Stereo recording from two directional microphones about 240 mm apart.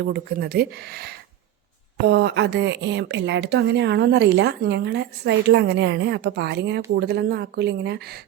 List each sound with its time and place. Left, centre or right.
0.0 s speech: right